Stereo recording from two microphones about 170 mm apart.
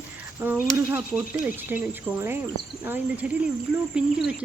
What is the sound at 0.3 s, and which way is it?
Speech, 10° right (ahead or behind).